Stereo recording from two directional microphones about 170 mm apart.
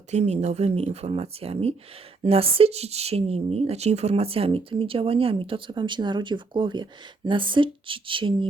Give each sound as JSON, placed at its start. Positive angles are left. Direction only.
{"t": 0.1, "sound": "speech", "side_deg": -40}